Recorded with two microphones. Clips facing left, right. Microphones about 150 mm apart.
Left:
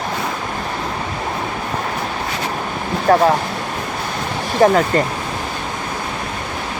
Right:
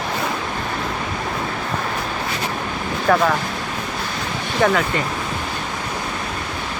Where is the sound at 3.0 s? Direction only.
30° left (ahead or behind).